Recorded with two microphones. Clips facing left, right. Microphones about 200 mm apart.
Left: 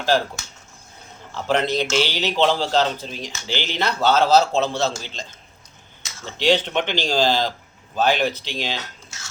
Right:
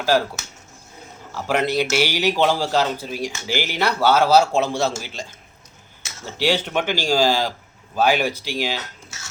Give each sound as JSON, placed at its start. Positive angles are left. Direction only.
{"t": 1.3, "sound": "a man's voice", "side_deg": -10}